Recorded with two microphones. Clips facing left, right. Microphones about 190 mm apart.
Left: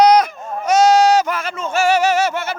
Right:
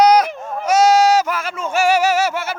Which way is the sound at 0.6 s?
5° right (ahead or behind).